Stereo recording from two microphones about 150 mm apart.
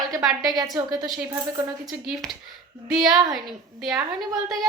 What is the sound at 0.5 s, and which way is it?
Speech, 25° right (ahead or behind).